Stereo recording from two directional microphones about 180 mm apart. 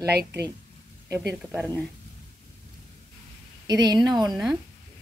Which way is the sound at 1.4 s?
10° right (ahead or behind).